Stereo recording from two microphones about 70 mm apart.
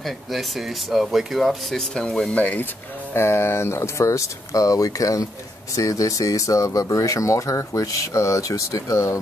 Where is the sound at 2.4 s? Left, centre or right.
Left.